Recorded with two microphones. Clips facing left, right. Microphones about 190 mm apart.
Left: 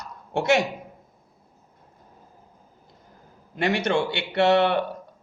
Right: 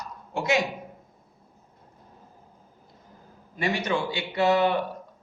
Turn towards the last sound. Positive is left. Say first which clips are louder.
# left 3 dB
turn(degrees=70)  # may be behind; listen again after turning